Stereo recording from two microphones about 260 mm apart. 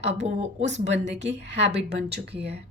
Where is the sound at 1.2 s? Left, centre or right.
Right.